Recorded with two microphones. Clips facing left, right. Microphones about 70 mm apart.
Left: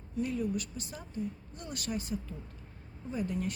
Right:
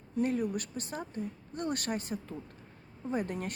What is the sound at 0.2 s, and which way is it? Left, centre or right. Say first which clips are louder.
A woman's voice: right 2 dB; right.